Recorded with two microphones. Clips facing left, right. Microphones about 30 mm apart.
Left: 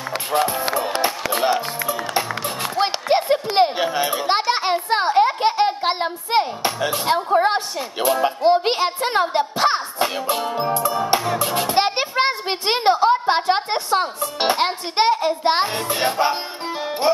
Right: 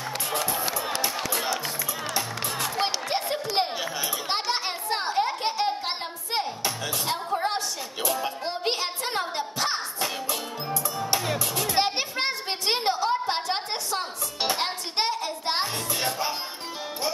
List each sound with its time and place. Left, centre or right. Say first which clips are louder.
0.3 s music: left 9 dB; left